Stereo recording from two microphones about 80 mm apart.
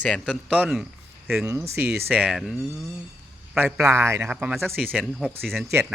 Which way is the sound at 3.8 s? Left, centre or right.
Right.